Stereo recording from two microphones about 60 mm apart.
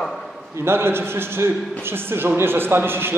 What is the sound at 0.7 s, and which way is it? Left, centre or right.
A man's voice, right.